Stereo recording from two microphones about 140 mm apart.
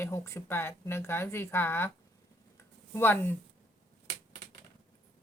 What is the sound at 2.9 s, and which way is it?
Speech, 15° left (ahead or behind).